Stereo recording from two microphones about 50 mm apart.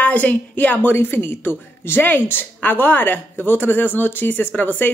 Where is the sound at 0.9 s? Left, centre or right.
Left.